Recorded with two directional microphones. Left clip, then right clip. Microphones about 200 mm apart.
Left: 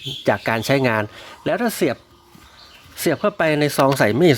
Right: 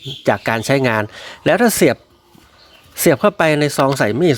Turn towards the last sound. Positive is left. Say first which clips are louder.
# even
turn(degrees=-5)  # may be behind; listen again after turning